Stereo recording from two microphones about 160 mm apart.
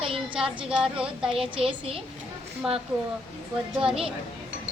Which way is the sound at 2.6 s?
5° right (ahead or behind).